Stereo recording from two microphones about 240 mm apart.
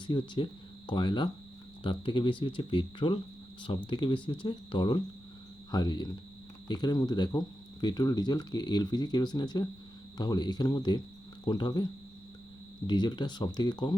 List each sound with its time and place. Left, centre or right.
0.1 s speech: centre
12.9 s speech: centre